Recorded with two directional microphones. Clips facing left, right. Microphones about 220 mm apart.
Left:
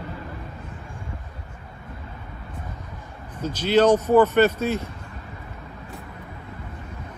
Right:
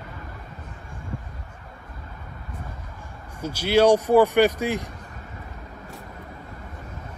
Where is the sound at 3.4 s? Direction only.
10° right (ahead or behind).